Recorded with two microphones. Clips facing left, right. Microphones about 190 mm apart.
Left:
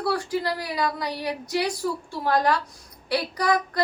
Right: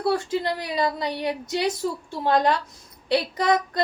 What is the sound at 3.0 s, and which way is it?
Female singing, 20° right (ahead or behind).